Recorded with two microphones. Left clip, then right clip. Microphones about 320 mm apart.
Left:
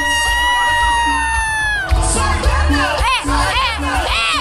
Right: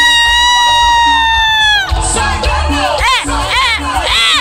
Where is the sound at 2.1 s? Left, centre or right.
Right.